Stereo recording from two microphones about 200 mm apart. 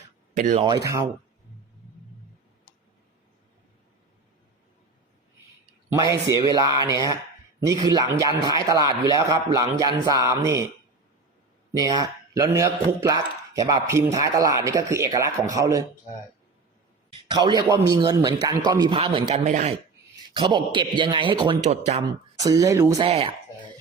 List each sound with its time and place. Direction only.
0.3 s speech: 40° right (ahead or behind)
0.6 s a man's voice: 20° right (ahead or behind)
5.9 s a man's voice: 15° right (ahead or behind)
11.8 s speech: 20° right (ahead or behind)
17.2 s a man's voice: 20° right (ahead or behind)
19.5 s speech: 35° right (ahead or behind)
20.3 s a man's voice: 25° right (ahead or behind)
22.4 s speech: 15° right (ahead or behind)
22.9 s a man's voice: 30° right (ahead or behind)